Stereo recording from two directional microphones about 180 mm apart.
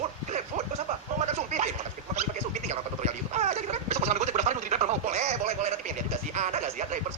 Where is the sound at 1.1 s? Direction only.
40° right (ahead or behind).